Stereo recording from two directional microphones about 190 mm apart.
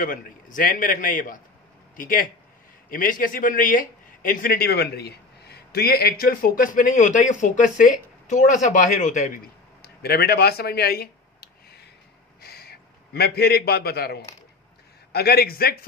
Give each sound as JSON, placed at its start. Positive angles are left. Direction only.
{"t": 0.0, "sound": "speech", "side_deg": 45}
{"t": 9.8, "sound": "a sound", "side_deg": 55}
{"t": 12.4, "sound": "a man's voice", "side_deg": 55}